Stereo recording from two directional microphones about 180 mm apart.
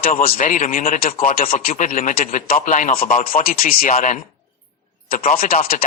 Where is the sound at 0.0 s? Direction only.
50° left (ahead or behind).